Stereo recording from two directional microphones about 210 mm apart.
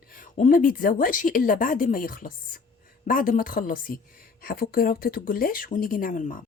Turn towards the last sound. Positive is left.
turn(degrees=40)  # may be behind; listen again after turning